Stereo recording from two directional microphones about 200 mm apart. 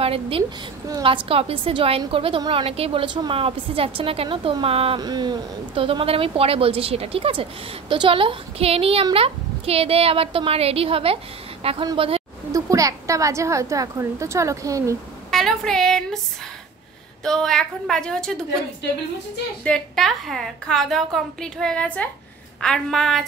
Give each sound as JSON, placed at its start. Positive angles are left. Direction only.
{"t": 0.0, "sound": "a woman's voice", "side_deg": -30}
{"t": 15.3, "sound": "a woman's voice", "side_deg": 0}
{"t": 17.2, "sound": "a woman's voice", "side_deg": 0}
{"t": 19.6, "sound": "a woman's voice", "side_deg": 5}